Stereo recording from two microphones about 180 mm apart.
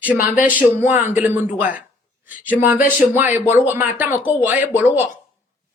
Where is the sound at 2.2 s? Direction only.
10° right (ahead or behind).